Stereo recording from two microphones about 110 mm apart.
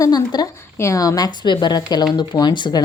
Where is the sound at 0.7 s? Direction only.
25° left (ahead or behind); by 2.8 s 45° left (ahead or behind).